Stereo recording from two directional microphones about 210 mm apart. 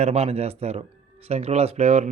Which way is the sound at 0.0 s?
30° right (ahead or behind).